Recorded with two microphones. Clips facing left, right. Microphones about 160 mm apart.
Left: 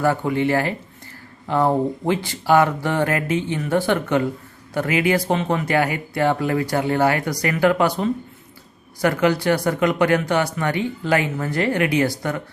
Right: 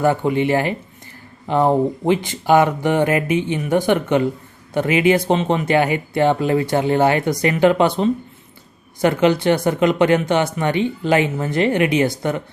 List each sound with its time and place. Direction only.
0.0 s speech: 20° right (ahead or behind)